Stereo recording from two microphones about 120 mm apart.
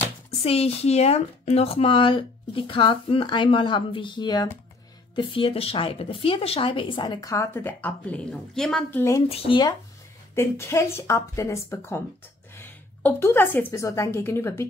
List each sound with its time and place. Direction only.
0.4 s speech: 55° left (ahead or behind); by 8.8 s 5° left (ahead or behind)
8.9 s speech: 25° left (ahead or behind)
9.3 s speech: 55° left (ahead or behind)
10.3 s a woman's voice: 25° left (ahead or behind)